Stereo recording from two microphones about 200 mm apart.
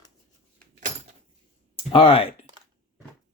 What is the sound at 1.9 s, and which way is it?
Speech, 25° left (ahead or behind).